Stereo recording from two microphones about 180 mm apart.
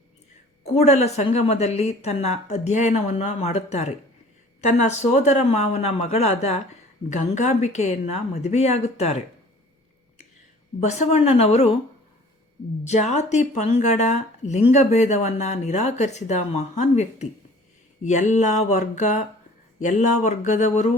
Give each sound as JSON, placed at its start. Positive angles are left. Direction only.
{"t": 0.7, "sound": "speech", "side_deg": 35}
{"t": 10.8, "sound": "speech", "side_deg": 40}
{"t": 12.8, "sound": "speech", "side_deg": 40}